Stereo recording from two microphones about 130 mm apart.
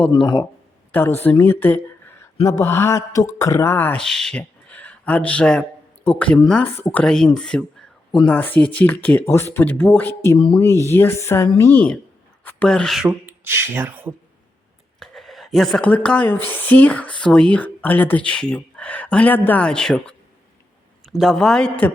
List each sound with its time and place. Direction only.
1.2 s speech: 15° left (ahead or behind)
4.0 s speech: 5° left (ahead or behind); by 7.0 s 20° left (ahead or behind)
7.0 s a man's voice: 5° left (ahead or behind)
13.1 s speech: 15° right (ahead or behind)
14.9 s a sound: centre (ahead or behind)
16.5 s a man's voice: 15° left (ahead or behind)